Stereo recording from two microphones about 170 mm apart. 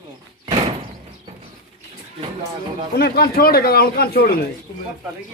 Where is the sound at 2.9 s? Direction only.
65° left (ahead or behind).